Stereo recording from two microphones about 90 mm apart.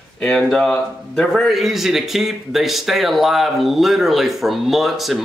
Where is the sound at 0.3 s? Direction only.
5° left (ahead or behind).